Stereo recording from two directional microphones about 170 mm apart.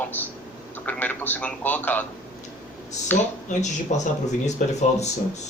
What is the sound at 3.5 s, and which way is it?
Speech, 45° left (ahead or behind).